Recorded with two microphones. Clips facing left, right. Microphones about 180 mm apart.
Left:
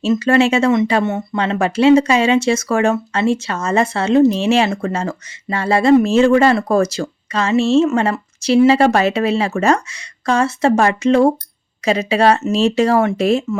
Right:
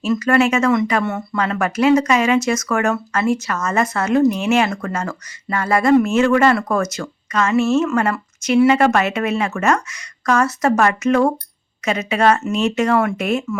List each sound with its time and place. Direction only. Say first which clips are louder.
0.0 s speech: left 2 dB; 25° left (ahead or behind)